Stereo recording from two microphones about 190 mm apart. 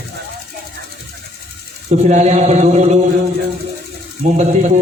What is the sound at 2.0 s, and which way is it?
Chant, 40° right (ahead or behind).